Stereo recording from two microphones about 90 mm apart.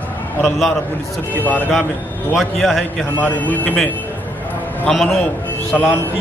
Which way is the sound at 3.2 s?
20° left (ahead or behind).